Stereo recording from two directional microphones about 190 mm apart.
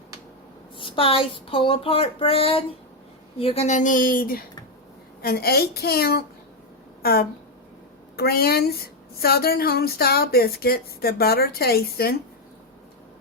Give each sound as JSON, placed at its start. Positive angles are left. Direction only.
{"t": 0.8, "sound": "a woman's voice", "side_deg": 30}
{"t": 7.0, "sound": "a sound", "side_deg": 55}
{"t": 8.1, "sound": "a woman's voice", "side_deg": 55}